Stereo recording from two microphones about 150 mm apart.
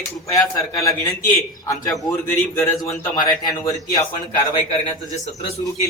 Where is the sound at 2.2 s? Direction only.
10° left (ahead or behind).